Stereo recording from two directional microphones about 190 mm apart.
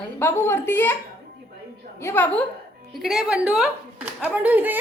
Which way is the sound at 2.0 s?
10° left (ahead or behind).